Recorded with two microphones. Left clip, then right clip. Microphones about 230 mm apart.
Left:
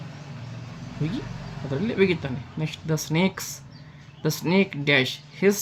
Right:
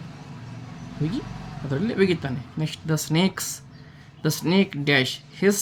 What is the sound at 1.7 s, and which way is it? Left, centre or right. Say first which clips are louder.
Speech: even; centre.